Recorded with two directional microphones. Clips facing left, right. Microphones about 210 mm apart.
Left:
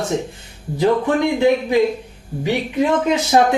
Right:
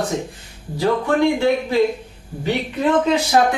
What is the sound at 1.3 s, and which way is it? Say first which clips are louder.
Speech: left 3 dB; 15° left (ahead or behind).